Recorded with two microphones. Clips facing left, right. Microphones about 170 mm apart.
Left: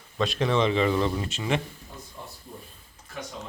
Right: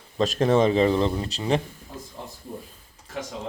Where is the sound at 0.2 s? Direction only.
40° right (ahead or behind).